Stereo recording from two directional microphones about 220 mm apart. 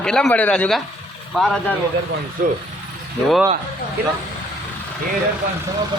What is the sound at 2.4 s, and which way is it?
Speech, 40° right (ahead or behind).